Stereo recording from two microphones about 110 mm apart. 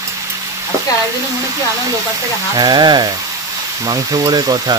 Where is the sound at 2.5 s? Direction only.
40° right (ahead or behind).